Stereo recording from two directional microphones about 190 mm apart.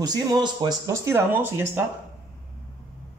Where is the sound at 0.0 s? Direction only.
20° right (ahead or behind).